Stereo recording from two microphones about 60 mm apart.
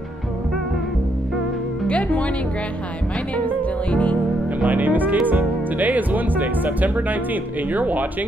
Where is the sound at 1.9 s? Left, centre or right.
Left.